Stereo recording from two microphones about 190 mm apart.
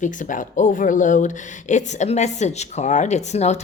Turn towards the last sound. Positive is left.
turn(degrees=35)  # may be behind; listen again after turning